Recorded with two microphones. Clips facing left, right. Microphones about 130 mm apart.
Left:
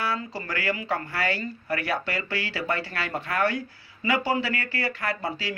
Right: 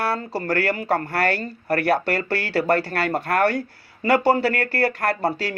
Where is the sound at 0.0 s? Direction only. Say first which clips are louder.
Right 5 dB; 65° right (ahead or behind).